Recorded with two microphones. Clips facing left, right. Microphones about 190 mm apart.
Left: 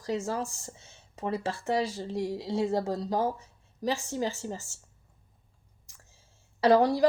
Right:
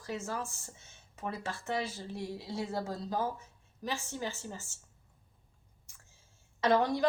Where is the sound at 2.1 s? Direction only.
90° left.